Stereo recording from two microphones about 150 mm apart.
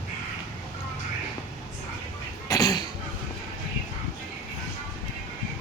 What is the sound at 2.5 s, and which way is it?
Cough, 25° left (ahead or behind).